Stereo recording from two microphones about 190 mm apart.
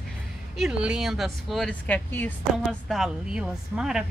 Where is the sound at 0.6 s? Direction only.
5° right (ahead or behind).